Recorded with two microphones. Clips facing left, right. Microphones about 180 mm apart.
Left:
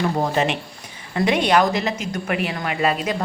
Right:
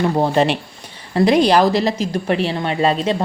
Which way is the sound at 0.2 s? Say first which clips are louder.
Right 5 dB; 35° right (ahead or behind).